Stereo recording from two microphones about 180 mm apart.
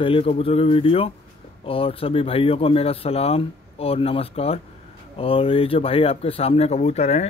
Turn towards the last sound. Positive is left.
turn(degrees=35)  # may be behind; listen again after turning